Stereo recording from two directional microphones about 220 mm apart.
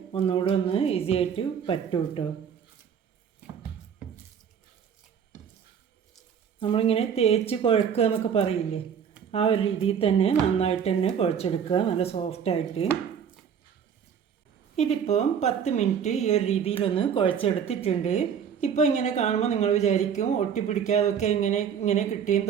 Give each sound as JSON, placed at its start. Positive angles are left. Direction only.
{"t": 0.1, "sound": "a woman's voice", "side_deg": 25}
{"t": 3.4, "sound": "music", "side_deg": -5}
{"t": 6.6, "sound": "a woman's voice", "side_deg": 25}
{"t": 14.8, "sound": "a woman's voice", "side_deg": 30}